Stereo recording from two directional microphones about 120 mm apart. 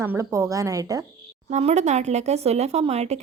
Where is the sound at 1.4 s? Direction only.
75° right (ahead or behind).